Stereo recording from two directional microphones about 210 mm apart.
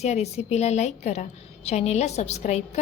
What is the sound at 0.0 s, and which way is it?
A woman's voice, 30° left (ahead or behind).